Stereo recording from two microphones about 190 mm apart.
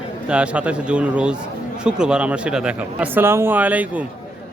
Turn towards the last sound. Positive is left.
turn(degrees=-10)  # may be behind; listen again after turning